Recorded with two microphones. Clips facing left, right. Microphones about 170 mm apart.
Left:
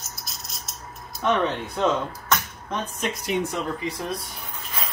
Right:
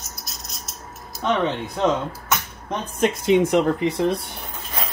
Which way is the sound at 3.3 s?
85° right.